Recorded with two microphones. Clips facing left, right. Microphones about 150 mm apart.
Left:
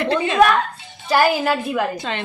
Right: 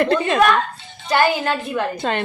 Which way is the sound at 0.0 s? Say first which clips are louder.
Right 2 dB; 50° right (ahead or behind).